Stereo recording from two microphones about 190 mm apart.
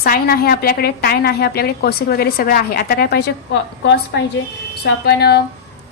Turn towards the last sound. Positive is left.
turn(degrees=60)  # may be behind; listen again after turning